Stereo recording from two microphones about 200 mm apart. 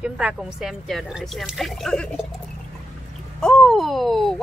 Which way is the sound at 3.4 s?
5° left (ahead or behind).